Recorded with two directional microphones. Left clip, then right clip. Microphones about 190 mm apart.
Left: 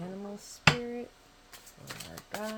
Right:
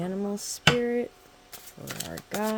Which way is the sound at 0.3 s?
60° right (ahead or behind).